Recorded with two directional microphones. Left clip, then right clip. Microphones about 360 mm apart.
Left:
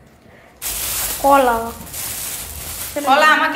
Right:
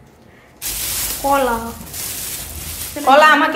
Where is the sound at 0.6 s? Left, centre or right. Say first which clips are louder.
Even; centre.